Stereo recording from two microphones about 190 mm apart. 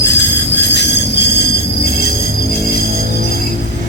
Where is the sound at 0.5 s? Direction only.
65° left (ahead or behind).